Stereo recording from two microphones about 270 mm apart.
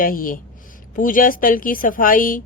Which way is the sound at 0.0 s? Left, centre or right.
Left.